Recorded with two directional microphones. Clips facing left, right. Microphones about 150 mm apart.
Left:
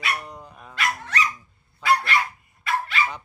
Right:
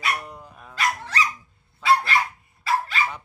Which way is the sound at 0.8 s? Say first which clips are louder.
Right 1 dB; 35° right (ahead or behind).